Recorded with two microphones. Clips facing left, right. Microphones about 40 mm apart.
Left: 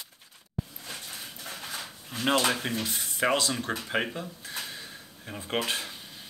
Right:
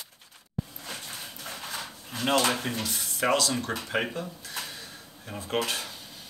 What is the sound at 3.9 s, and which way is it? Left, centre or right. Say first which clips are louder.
Speech: right 1 dB; centre.